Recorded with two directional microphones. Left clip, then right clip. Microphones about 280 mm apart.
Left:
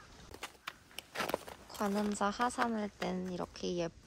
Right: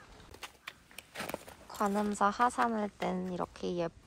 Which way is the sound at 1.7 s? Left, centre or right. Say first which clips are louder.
Right 4 dB; centre.